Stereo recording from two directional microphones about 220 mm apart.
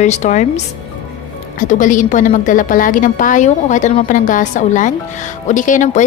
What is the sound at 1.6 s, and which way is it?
A woman's voice, 35° left (ahead or behind).